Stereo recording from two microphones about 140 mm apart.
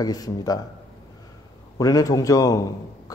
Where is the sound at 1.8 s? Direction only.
25° left (ahead or behind).